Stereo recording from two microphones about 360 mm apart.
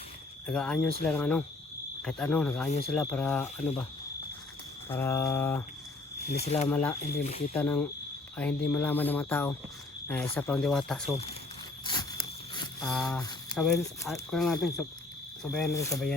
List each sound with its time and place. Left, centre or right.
0.4 s speech: centre
2.6 s speech: centre
2.9 s speech: centre
4.9 s speech: centre
6.2 s speech: centre
6.7 s speech: centre
7.2 s speech: centre
7.5 s speech: centre
12.8 s speech: centre